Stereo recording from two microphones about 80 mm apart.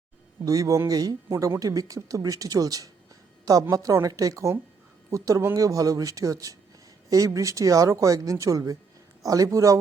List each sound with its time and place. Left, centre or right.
0.4 s speech: right